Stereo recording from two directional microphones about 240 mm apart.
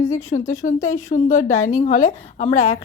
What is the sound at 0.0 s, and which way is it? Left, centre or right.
Speech, centre.